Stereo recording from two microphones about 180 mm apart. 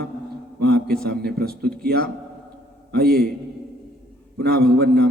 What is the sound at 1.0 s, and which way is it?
Speech, 60° right (ahead or behind).